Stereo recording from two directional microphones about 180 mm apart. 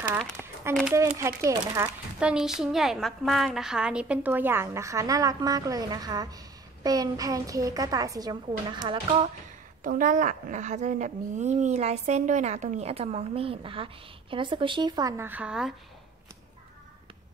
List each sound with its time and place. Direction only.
0.4 s crumpling: centre (ahead or behind)
0.9 s a woman's voice: 15° right (ahead or behind)
2.1 s a woman's voice: 5° right (ahead or behind); by 9.3 s 30° right (ahead or behind)
9.8 s a woman's voice: 50° right (ahead or behind); by 15.7 s 5° right (ahead or behind)